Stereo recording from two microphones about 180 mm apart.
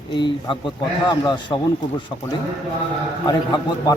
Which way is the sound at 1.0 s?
25° left (ahead or behind).